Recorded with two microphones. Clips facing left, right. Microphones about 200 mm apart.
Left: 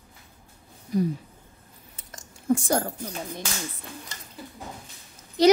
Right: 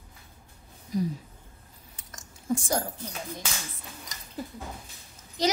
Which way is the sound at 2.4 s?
60° left (ahead or behind).